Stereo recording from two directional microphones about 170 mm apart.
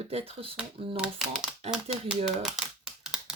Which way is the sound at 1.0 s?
5° right (ahead or behind).